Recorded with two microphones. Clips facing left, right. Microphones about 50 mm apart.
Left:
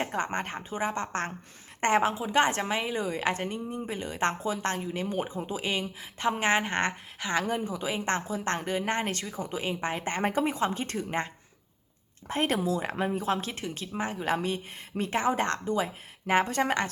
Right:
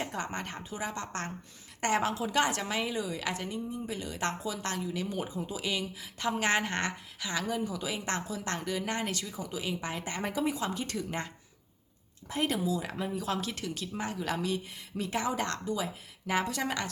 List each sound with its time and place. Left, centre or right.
0.0 s a woman's voice: left
3.0 s a woman's voice: left
12.3 s a woman's voice: left